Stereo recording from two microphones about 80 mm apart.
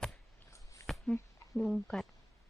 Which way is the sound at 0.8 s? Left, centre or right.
Left.